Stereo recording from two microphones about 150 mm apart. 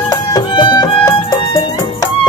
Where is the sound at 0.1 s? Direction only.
25° left (ahead or behind).